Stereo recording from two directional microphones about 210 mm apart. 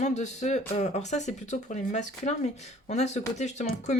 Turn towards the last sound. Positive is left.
turn(degrees=35)  # may be behind; listen again after turning